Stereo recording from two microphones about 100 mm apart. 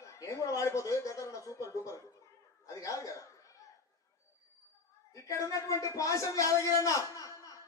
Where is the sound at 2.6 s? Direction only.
35° left (ahead or behind).